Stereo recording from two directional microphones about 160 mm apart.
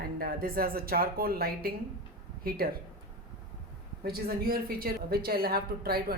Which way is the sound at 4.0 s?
70° right (ahead or behind).